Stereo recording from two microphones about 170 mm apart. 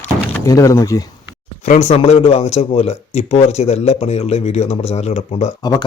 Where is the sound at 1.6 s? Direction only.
45° left (ahead or behind).